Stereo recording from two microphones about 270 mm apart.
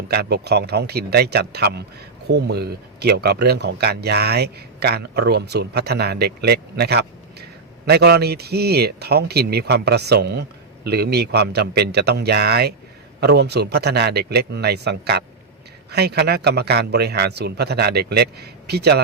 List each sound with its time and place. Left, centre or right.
0.1 s speech: right